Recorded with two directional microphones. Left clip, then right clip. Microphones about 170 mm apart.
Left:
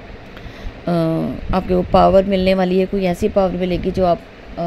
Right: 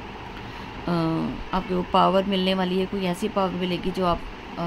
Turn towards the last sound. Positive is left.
turn(degrees=30)  # may be behind; listen again after turning